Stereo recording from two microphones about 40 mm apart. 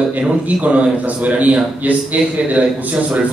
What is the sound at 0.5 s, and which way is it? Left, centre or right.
A man's voice, right.